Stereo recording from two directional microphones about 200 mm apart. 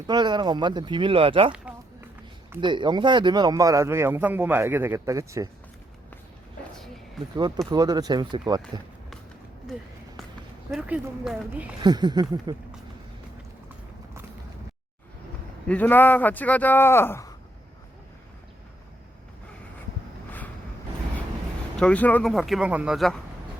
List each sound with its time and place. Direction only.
0.1 s speech: 20° right (ahead or behind)
1.5 s a sound: 5° right (ahead or behind)
2.6 s speech: 25° right (ahead or behind)
6.7 s a sound: centre (ahead or behind)
7.3 s speech: 20° right (ahead or behind)
10.7 s speech: 5° right (ahead or behind)
11.8 s speech: 20° right (ahead or behind)
15.6 s speech: 5° left (ahead or behind)
21.8 s speech: 5° left (ahead or behind)